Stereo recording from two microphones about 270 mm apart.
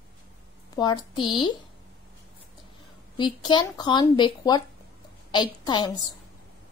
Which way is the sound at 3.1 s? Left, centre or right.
Centre.